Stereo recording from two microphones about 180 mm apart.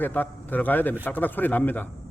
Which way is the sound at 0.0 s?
10° left (ahead or behind).